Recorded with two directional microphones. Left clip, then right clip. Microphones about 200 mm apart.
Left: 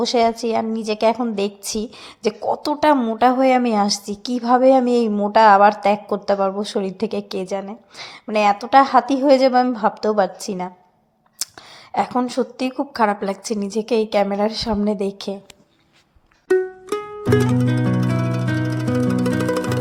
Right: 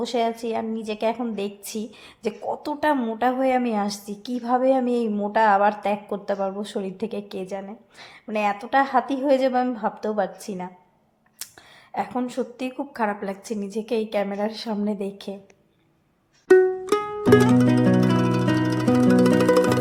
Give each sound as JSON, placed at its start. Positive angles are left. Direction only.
{"t": 0.0, "sound": "a woman's voice", "side_deg": 25}
{"t": 11.4, "sound": "a sound", "side_deg": 20}
{"t": 11.9, "sound": "a woman's voice", "side_deg": 25}
{"t": 16.5, "sound": "music", "side_deg": 0}